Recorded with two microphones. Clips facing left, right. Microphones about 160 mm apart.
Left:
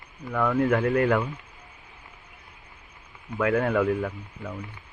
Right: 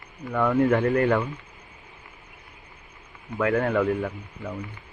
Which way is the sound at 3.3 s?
Centre (ahead or behind).